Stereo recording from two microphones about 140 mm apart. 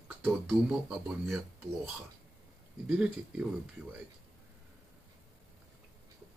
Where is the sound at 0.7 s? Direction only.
5° right (ahead or behind).